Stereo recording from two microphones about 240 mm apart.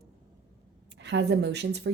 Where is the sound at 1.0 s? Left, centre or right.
Right.